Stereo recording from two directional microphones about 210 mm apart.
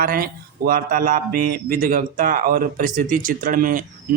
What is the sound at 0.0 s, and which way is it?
Speech, 45° right (ahead or behind).